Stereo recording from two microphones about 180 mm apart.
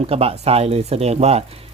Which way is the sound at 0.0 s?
35° right (ahead or behind).